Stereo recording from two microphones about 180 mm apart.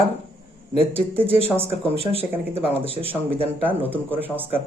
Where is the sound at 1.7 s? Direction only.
35° right (ahead or behind).